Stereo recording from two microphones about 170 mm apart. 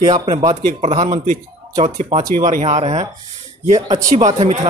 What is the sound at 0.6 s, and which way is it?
A man's voice, 40° right (ahead or behind).